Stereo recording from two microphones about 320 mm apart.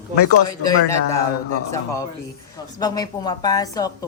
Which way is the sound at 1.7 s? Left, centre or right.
Centre.